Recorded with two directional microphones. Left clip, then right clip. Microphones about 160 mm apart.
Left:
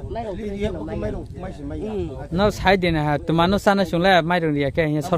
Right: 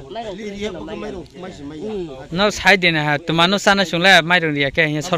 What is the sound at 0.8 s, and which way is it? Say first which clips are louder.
Speech: left 1 dB; 30° left (ahead or behind).